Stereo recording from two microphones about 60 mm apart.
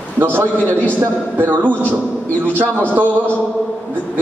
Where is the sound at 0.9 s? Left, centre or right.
Right.